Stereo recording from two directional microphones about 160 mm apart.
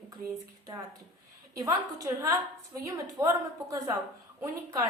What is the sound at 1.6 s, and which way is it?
A woman's voice, 20° right (ahead or behind).